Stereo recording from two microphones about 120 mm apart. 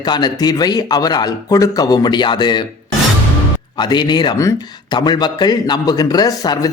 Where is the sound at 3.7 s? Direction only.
40° left (ahead or behind).